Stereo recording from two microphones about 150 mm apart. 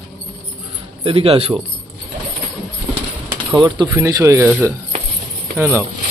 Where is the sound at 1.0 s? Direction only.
40° right (ahead or behind).